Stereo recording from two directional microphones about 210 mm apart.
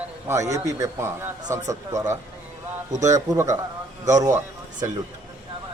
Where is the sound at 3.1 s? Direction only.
15° right (ahead or behind).